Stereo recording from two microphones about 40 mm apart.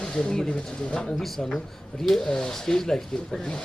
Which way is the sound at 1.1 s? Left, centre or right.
Centre.